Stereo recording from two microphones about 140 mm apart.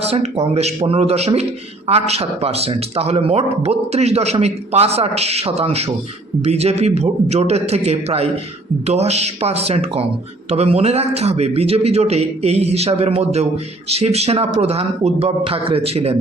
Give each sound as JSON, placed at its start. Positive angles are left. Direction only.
{"t": 0.0, "sound": "a man's voice", "side_deg": -45}